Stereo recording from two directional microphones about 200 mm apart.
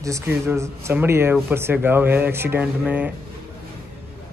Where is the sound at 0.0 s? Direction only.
15° right (ahead or behind).